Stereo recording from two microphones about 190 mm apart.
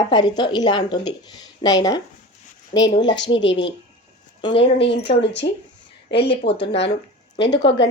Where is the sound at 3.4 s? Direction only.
75° left (ahead or behind).